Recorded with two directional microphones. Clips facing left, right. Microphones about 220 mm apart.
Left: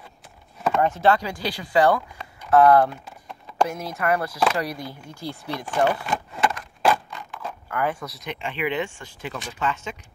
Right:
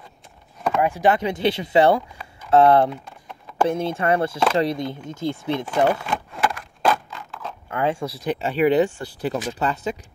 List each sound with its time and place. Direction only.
0.6 s a sound: 5° left (ahead or behind)
0.8 s speech: 15° right (ahead or behind)
3.1 s typing: centre (ahead or behind)
3.6 s speech: 30° right (ahead or behind)
5.9 s a sound: centre (ahead or behind)
7.6 s speech: 25° right (ahead or behind)